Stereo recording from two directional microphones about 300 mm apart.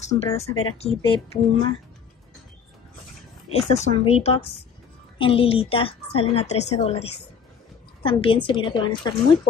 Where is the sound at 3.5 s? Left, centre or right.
Centre.